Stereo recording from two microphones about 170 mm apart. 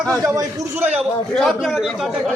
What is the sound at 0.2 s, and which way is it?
Speech, 20° right (ahead or behind).